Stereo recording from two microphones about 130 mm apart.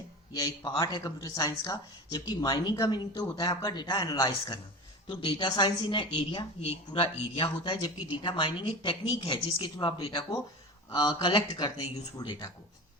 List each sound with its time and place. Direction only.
0.3 s a woman's voice: 30° left (ahead or behind)